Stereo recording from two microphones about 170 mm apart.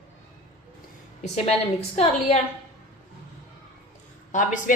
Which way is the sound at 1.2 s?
40° left (ahead or behind).